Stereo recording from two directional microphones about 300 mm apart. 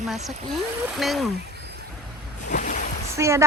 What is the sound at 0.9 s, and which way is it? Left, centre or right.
Speech, centre.